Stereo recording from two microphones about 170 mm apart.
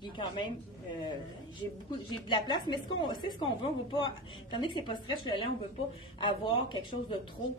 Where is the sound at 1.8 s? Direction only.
25° left (ahead or behind).